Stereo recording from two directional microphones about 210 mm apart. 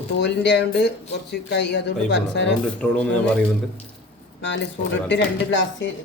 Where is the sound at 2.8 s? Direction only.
5° left (ahead or behind).